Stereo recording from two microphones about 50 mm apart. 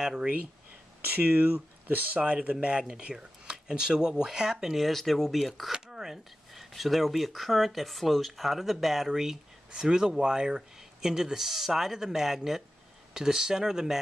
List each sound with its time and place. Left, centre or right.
0.0 s speech: centre
1.0 s speech: right; by 5.7 s centre
5.7 s speech: centre